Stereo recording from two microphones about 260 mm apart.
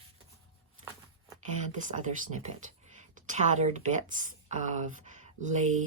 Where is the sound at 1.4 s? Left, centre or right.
Right.